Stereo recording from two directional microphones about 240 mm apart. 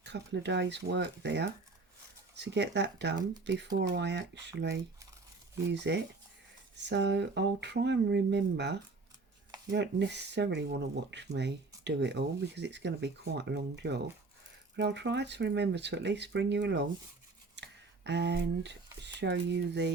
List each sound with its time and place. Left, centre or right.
0.0 s speech: right